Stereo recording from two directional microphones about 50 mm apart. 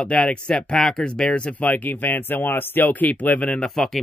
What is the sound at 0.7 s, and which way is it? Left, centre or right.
Speech, centre.